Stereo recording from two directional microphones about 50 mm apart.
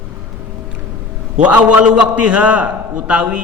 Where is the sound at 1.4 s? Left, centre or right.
Right.